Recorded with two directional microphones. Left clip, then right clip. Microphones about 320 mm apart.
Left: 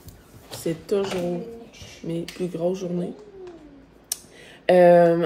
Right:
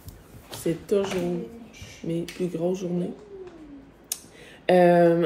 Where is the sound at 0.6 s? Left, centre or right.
Centre.